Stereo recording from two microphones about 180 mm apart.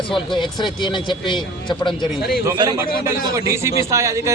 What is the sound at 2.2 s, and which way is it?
Speech, 60° left (ahead or behind).